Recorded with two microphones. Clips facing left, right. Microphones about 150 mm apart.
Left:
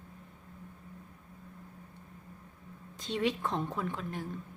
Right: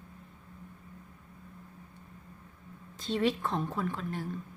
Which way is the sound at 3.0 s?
15° left (ahead or behind).